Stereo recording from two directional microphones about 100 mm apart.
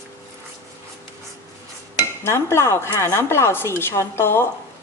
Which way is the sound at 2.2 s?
25° left (ahead or behind).